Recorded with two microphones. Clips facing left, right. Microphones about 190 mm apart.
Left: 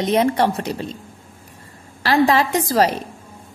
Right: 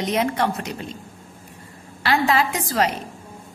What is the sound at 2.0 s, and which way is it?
Speech, 35° left (ahead or behind).